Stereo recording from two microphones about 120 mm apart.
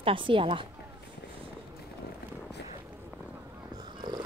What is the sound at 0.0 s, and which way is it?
Speech, 45° right (ahead or behind).